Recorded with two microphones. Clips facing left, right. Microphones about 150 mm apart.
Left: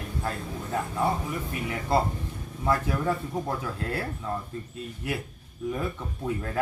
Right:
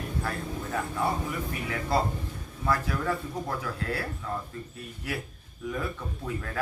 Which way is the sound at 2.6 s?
20° left (ahead or behind).